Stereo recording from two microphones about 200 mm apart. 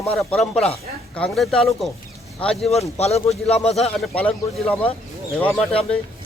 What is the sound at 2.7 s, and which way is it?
Speech, 30° left (ahead or behind).